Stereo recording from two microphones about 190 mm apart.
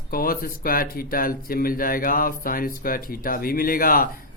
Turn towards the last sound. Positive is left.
turn(degrees=50)  # may be behind; listen again after turning